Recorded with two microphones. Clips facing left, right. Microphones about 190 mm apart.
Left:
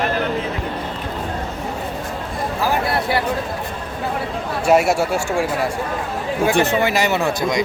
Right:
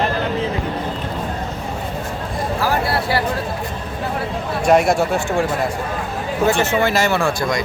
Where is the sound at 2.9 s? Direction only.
20° left (ahead or behind).